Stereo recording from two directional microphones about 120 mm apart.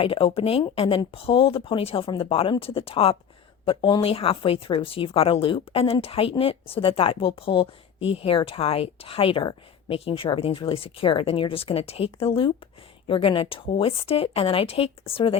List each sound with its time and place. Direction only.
0.0 s speech: 50° left (ahead or behind)
3.7 s speech: 40° left (ahead or behind)